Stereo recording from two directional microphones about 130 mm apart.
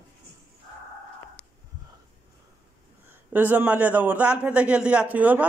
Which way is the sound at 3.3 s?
10° right (ahead or behind).